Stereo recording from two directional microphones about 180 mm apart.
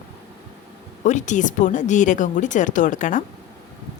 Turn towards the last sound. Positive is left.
turn(degrees=45)  # may be behind; listen again after turning